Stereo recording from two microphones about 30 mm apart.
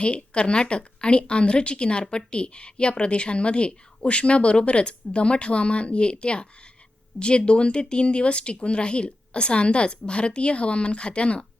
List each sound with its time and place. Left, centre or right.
0.0 s speech: left